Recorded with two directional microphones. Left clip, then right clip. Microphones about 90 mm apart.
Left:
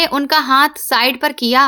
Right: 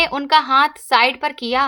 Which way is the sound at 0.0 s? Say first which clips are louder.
Left 1 dB; 35° left (ahead or behind).